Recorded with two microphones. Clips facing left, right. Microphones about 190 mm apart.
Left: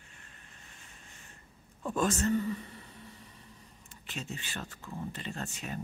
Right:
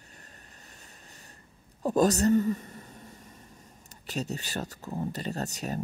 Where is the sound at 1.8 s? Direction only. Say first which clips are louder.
Right 7 dB; 40° right (ahead or behind).